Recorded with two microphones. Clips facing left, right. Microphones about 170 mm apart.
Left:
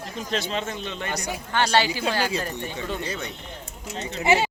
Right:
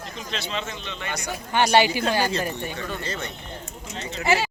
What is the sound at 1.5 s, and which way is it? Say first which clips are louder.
Speech: right 3 dB; 15° right (ahead or behind).